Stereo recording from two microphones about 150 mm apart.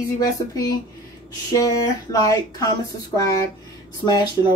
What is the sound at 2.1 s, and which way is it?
Speech, 25° left (ahead or behind).